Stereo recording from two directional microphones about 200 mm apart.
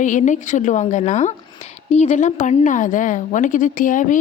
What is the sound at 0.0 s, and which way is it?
A woman's voice, 40° left (ahead or behind).